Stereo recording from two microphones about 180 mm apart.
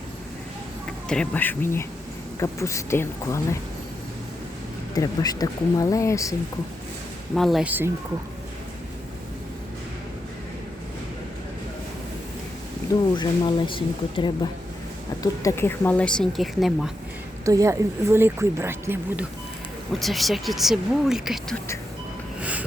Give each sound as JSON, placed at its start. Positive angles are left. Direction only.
{"t": 1.0, "sound": "speech", "side_deg": 5}
{"t": 4.9, "sound": "speech", "side_deg": 20}
{"t": 7.3, "sound": "speech", "side_deg": 0}
{"t": 12.9, "sound": "speech", "side_deg": 25}
{"t": 15.2, "sound": "speech", "side_deg": 15}
{"t": 17.4, "sound": "speech", "side_deg": -15}
{"t": 20.0, "sound": "speech", "side_deg": 0}
{"t": 22.4, "sound": "vehicle", "side_deg": -5}